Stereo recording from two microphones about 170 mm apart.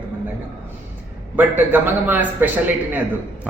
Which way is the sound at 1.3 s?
10° right (ahead or behind).